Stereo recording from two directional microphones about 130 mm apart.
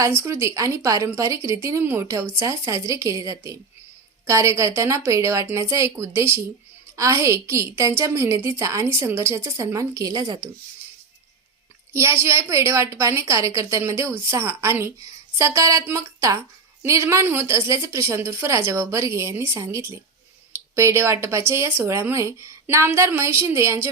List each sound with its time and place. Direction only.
0.0 s speech: 20° right (ahead or behind)
12.2 s speech: 20° right (ahead or behind)